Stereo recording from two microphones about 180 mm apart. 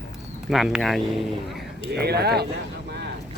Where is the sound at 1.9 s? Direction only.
65° right (ahead or behind).